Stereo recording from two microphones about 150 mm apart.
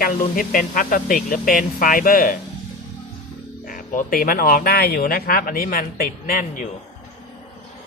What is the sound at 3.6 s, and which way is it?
Speech, 65° left (ahead or behind).